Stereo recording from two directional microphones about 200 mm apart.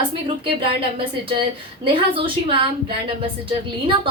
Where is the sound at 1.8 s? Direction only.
25° right (ahead or behind).